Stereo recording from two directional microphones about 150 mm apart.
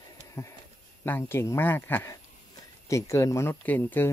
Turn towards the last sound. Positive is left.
turn(degrees=15)  # may be behind; listen again after turning